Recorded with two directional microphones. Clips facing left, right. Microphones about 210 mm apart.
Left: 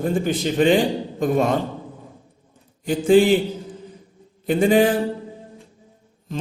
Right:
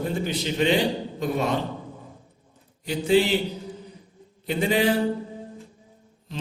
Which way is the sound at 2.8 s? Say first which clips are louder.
Left 6 dB; 50° left (ahead or behind).